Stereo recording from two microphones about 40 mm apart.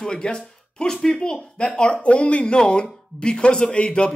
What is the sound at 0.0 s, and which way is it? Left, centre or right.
A man's voice, centre.